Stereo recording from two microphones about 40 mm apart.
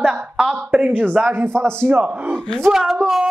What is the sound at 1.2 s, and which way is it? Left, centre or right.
Speech, right.